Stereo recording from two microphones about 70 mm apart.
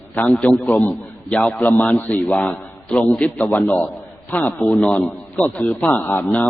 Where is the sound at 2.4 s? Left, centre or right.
Centre.